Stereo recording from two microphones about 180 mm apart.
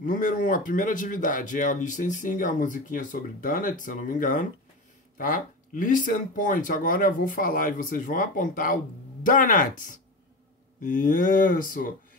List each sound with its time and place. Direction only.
0.0 s speech: 45° left (ahead or behind)